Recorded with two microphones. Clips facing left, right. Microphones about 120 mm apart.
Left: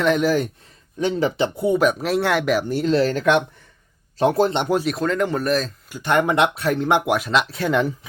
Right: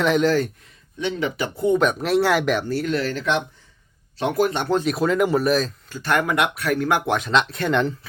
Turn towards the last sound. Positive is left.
turn(degrees=5)  # may be behind; listen again after turning